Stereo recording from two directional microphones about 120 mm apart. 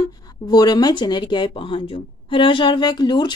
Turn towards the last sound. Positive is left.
turn(degrees=35)  # may be behind; listen again after turning